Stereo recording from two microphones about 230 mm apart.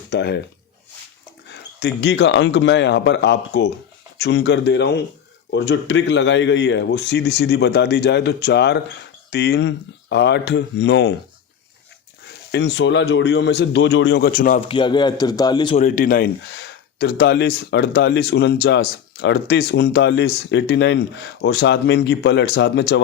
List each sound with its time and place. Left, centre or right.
0.1 s speech: left
1.5 s speech: left
12.5 s speech: left
14.7 s speech: left
15.8 s speech: left